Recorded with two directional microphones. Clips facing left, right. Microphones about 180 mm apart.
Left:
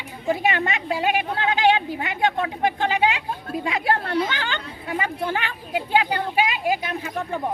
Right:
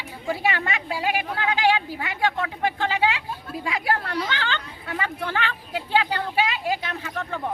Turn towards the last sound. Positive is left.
turn(degrees=10)  # may be behind; listen again after turning